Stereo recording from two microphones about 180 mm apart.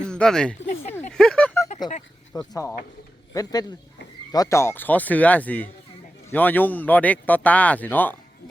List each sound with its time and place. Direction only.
0.1 s speech: 5° left (ahead or behind)
1.1 s a sound: 5° left (ahead or behind)
1.8 s a man's voice: 25° left (ahead or behind)
2.3 s speech: 5° left (ahead or behind)
3.3 s a man's voice: 20° left (ahead or behind)